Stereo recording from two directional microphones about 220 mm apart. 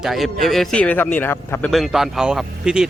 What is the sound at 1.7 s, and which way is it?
A man's voice, centre (ahead or behind).